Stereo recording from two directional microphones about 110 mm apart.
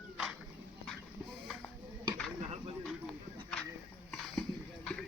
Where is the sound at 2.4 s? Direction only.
65° right (ahead or behind).